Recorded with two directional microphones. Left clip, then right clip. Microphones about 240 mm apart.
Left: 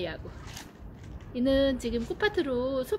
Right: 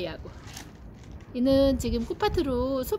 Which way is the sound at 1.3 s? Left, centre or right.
Centre.